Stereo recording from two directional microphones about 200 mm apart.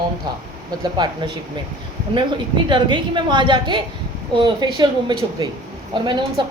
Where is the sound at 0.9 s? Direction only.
20° right (ahead or behind).